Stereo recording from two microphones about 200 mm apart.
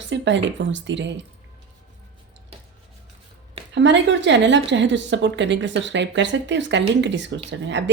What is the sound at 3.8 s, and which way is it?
A woman's voice, 65° right (ahead or behind).